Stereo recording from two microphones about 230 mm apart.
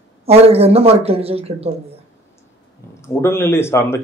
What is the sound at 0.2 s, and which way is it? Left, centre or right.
Speech, right.